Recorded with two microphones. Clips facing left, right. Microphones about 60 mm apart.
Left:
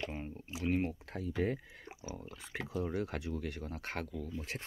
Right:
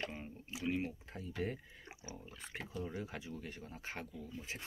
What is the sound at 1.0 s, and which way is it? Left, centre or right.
Speech, left.